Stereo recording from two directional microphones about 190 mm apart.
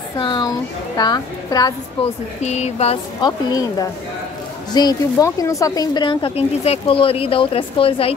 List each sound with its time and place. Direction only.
0.2 s speech: 25° left (ahead or behind)
2.4 s speech: 35° left (ahead or behind)
3.3 s speech: 20° left (ahead or behind)